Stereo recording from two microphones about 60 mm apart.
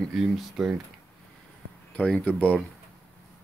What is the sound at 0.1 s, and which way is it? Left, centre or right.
Speech, centre.